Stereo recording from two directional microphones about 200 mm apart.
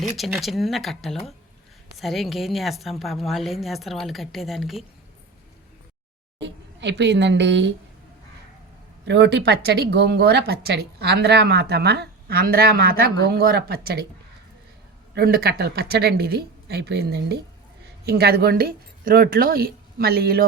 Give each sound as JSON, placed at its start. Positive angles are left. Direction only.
{"t": 0.3, "sound": "a woman's voice", "side_deg": 0}
{"t": 6.4, "sound": "a woman's voice", "side_deg": -60}
{"t": 9.0, "sound": "a woman's voice", "side_deg": -60}
{"t": 15.1, "sound": "a woman's voice", "side_deg": -50}